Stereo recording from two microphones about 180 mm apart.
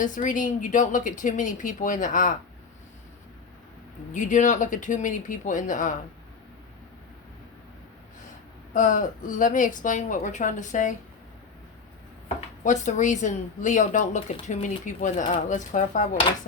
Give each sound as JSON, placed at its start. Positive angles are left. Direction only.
{"t": 0.0, "sound": "speech", "side_deg": 45}
{"t": 4.1, "sound": "speech", "side_deg": 45}
{"t": 8.7, "sound": "speech", "side_deg": 45}
{"t": 12.6, "sound": "speech", "side_deg": 45}